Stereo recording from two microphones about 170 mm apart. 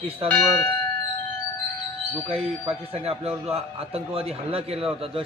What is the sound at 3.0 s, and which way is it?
A man's voice, 35° right (ahead or behind).